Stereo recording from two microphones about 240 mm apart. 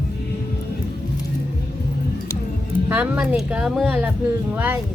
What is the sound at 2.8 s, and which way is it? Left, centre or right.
A woman's voice, centre.